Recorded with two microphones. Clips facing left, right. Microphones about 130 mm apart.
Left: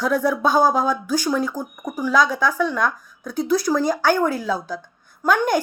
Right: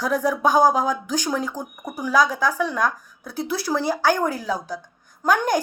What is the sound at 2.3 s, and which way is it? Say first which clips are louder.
Speech: left 2 dB; 40° right (ahead or behind).